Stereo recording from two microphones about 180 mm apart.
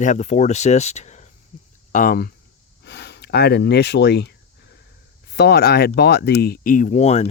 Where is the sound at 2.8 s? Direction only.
70° left (ahead or behind).